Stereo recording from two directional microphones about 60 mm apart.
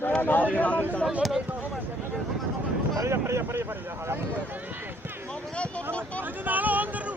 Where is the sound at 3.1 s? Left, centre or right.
Right.